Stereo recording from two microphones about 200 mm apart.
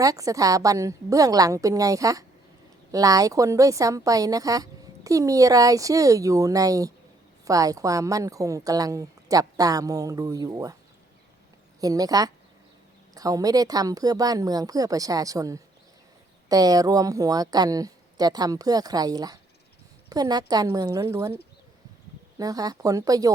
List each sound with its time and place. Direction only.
0.0 s a woman's voice: 15° right (ahead or behind)
11.8 s a woman's voice: 20° right (ahead or behind)